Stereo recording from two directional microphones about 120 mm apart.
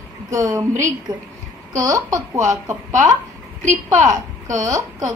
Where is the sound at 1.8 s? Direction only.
30° right (ahead or behind).